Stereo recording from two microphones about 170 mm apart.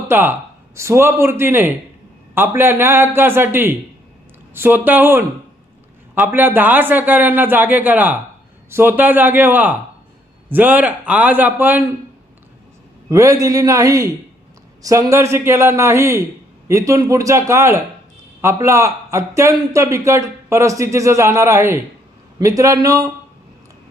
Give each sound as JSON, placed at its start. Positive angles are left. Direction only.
{"t": 0.1, "sound": "a man's voice", "side_deg": -10}
{"t": 13.1, "sound": "a man's voice", "side_deg": -20}